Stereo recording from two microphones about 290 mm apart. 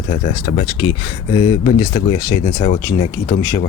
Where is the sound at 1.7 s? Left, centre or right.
Centre.